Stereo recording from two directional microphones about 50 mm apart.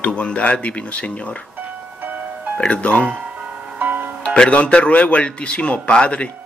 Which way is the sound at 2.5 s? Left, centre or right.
Left.